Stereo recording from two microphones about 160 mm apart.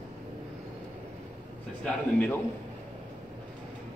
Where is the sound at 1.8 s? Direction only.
10° left (ahead or behind).